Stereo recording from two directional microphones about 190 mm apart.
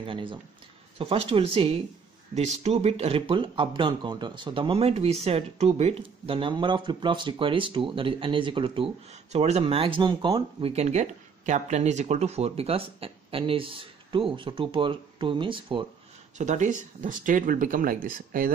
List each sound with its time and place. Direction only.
0.0 s speech: 25° right (ahead or behind)
16.3 s speech: 40° right (ahead or behind)